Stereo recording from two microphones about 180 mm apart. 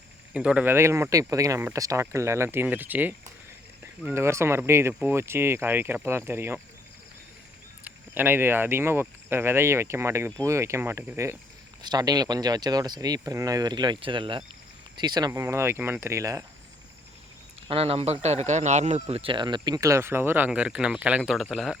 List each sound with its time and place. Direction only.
0.3 s speech: 5° right (ahead or behind)
7.9 s speech: 10° right (ahead or behind)
17.7 s speech: 30° right (ahead or behind); by 21.8 s centre (ahead or behind)